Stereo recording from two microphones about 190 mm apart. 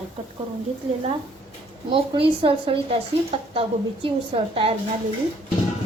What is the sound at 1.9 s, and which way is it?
A woman's voice, 30° right (ahead or behind).